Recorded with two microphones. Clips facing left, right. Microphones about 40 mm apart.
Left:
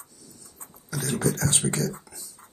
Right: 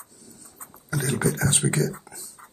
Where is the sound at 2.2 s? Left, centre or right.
Right.